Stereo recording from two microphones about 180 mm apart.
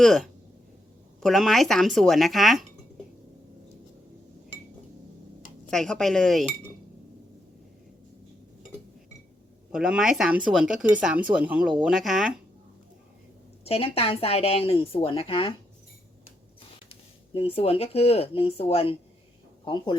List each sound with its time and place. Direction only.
0.0 s speech: centre (ahead or behind)
5.7 s speech: centre (ahead or behind)
9.7 s speech: 5° right (ahead or behind)
13.7 s speech: 30° left (ahead or behind)
16.9 s speech: 30° left (ahead or behind)